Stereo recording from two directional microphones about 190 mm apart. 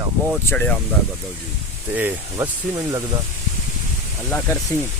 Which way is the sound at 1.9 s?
10° right (ahead or behind).